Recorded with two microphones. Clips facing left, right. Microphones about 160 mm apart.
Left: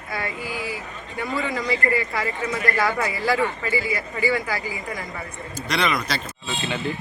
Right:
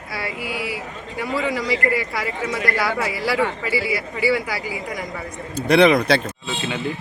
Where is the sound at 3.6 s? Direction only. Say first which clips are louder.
Right 2 dB; 10° right (ahead or behind).